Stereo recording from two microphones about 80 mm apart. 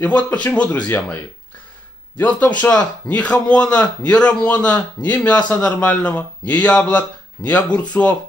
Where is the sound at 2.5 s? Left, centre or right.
Centre.